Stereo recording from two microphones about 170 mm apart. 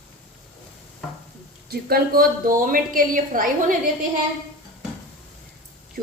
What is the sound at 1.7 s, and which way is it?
A woman's voice, 60° right (ahead or behind).